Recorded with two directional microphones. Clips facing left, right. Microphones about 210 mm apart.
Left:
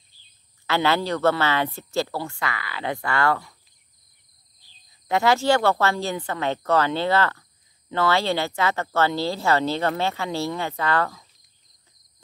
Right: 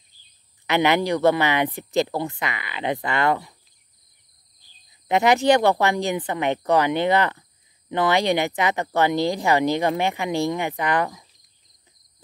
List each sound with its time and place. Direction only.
0.7 s speech: 15° right (ahead or behind)
5.0 s speech: 20° right (ahead or behind)